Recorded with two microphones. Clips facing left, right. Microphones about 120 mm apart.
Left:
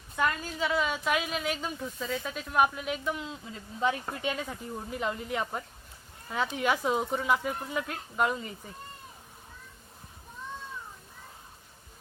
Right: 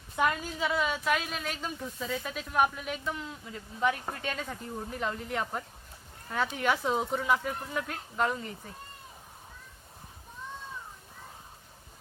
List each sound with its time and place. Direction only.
0.6 s speech: centre (ahead or behind); by 4.3 s 20° left (ahead or behind)
4.3 s speech: 10° left (ahead or behind)